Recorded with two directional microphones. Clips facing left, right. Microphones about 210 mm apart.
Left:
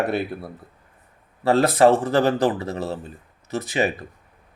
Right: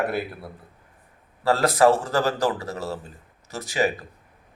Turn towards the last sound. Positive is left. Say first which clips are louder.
# left 1 dB
turn(degrees=20)  # may be behind; listen again after turning